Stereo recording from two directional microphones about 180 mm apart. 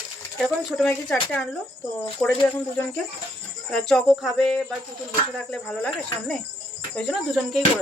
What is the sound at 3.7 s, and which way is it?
Speech, 5° left (ahead or behind).